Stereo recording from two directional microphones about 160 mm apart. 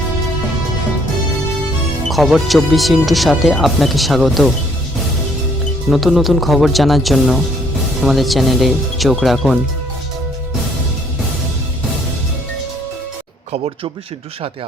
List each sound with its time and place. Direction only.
2.0 s speech: centre (ahead or behind)
5.9 s speech: centre (ahead or behind)
13.5 s speech: 35° right (ahead or behind)